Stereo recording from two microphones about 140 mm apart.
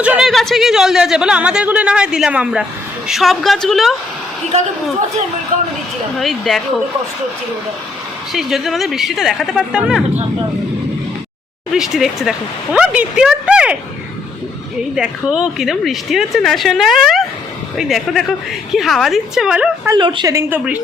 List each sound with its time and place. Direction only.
0.0 s speech: 5° right (ahead or behind)
6.1 s speech: centre (ahead or behind)
8.3 s speech: centre (ahead or behind)
11.7 s speech: 5° right (ahead or behind)
14.9 s speech: 5° right (ahead or behind)
20.0 s a woman's voice: 35° right (ahead or behind)
20.2 s speech: 20° right (ahead or behind)